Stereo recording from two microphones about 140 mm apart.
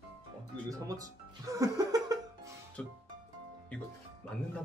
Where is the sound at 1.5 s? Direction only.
25° right (ahead or behind).